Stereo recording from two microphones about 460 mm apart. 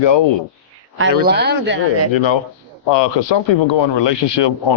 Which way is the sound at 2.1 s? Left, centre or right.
Left.